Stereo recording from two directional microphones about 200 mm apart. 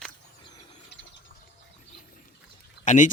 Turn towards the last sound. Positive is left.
turn(degrees=40)  # may be behind; listen again after turning